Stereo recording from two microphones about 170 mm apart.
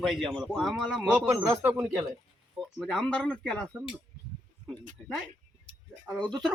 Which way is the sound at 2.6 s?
Centre (ahead or behind).